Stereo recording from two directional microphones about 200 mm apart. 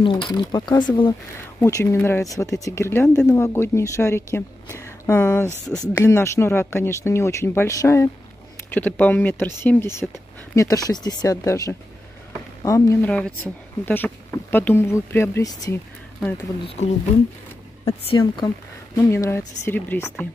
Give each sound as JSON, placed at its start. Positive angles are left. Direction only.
{"t": 0.0, "sound": "speech", "side_deg": 25}
{"t": 5.5, "sound": "speech", "side_deg": -10}
{"t": 5.9, "sound": "speech", "side_deg": 15}
{"t": 17.8, "sound": "speech", "side_deg": 20}